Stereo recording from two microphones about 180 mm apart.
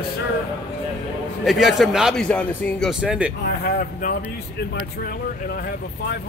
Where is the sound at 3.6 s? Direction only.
55° left (ahead or behind).